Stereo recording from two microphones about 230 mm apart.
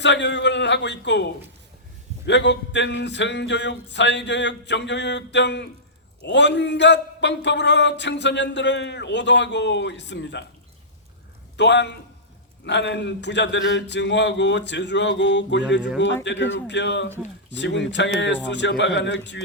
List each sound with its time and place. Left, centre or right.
0.0 s a man's voice: left
11.5 s a man's voice: left